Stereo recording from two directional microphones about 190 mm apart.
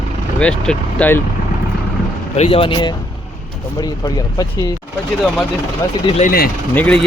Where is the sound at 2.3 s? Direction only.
30° left (ahead or behind).